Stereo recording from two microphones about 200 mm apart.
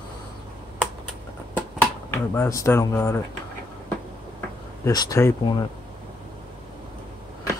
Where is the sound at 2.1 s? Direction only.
15° left (ahead or behind).